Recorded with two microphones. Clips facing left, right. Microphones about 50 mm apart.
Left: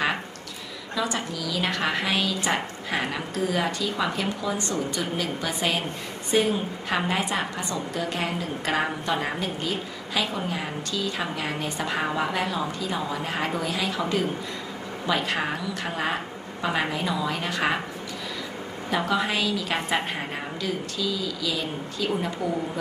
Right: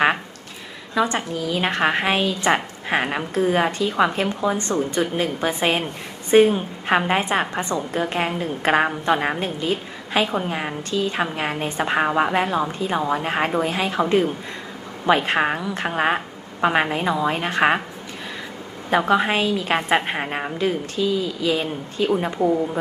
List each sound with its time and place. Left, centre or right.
0.9 s a woman's voice: right
18.9 s a woman's voice: right